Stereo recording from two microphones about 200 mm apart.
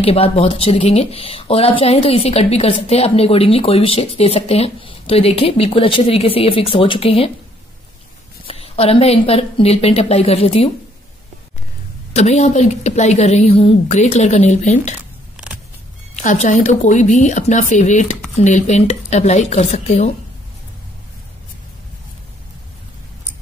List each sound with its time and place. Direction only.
0.0 s speech: 30° left (ahead or behind)
8.5 s speech: 30° left (ahead or behind)
12.1 s speech: 35° left (ahead or behind)
15.4 s vehicle: 5° right (ahead or behind)
16.2 s speech: 40° left (ahead or behind)